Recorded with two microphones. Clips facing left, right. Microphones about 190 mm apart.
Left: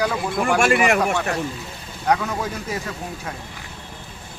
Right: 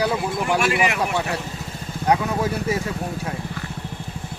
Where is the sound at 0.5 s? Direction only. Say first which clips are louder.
Left 5 dB; 50° left (ahead or behind).